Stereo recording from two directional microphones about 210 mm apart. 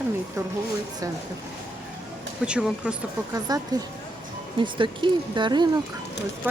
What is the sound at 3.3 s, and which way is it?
Speech, 15° right (ahead or behind).